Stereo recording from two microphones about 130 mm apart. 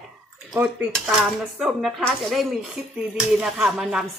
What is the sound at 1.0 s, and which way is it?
Speech, 5° right (ahead or behind).